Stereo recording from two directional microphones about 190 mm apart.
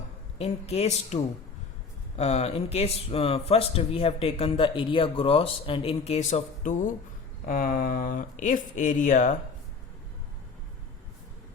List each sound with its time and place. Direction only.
0.3 s speech: 35° left (ahead or behind)